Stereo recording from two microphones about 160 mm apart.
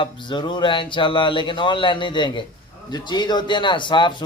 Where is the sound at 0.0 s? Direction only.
30° left (ahead or behind).